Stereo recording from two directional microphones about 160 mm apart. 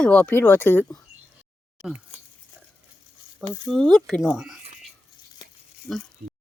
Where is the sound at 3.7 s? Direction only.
Centre (ahead or behind).